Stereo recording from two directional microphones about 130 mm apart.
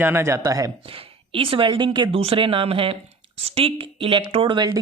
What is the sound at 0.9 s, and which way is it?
Speech, 45° right (ahead or behind).